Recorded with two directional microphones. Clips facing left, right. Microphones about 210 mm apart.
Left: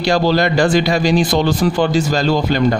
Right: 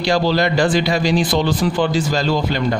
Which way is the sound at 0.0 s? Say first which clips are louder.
Left 2 dB; 50° left (ahead or behind).